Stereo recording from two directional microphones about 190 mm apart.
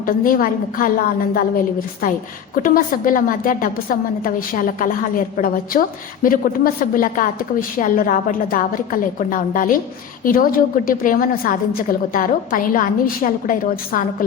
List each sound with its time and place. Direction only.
0.0 s a woman's voice: 50° left (ahead or behind)